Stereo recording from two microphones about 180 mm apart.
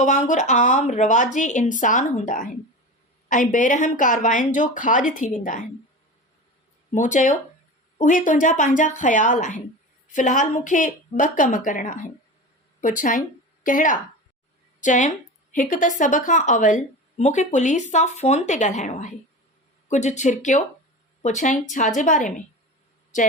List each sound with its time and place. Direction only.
0.0 s speech: 45° left (ahead or behind)
6.9 s a woman's voice: 45° left (ahead or behind)